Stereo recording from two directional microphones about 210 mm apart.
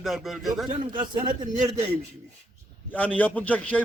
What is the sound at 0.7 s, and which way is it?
Speech, 20° right (ahead or behind).